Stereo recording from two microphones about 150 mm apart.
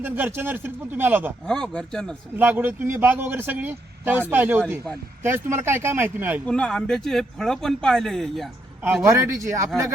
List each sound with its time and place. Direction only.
0.0 s a man's voice: 15° right (ahead or behind)
1.5 s speech: 5° left (ahead or behind)
2.4 s a man's voice: 15° right (ahead or behind)
6.4 s speech: 5° left (ahead or behind)
9.0 s speech: 20° right (ahead or behind)